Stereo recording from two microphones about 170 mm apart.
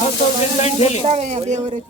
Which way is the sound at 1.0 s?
40° right (ahead or behind).